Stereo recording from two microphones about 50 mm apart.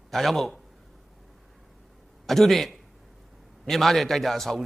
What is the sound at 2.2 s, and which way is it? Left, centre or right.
A man's voice, centre.